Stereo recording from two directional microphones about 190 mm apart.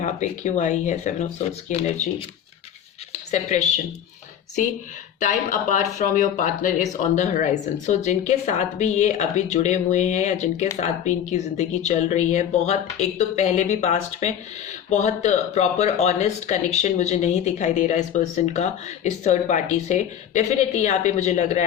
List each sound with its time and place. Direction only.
0.0 s speech: 40° left (ahead or behind)
5.2 s speech: 40° left (ahead or behind)